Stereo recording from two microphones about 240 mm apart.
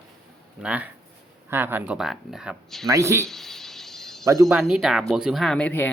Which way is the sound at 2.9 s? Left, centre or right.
Centre.